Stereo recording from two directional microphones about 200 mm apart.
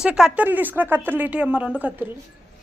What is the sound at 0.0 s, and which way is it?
Speech, 5° right (ahead or behind).